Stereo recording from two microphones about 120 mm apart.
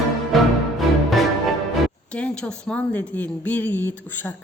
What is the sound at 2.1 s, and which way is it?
Speech, 10° left (ahead or behind).